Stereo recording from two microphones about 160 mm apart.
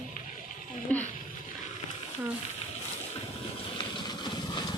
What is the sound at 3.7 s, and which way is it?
Vehicle, 30° left (ahead or behind).